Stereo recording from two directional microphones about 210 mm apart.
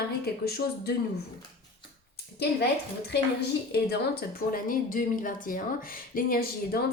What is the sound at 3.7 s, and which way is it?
A woman's voice, 50° left (ahead or behind).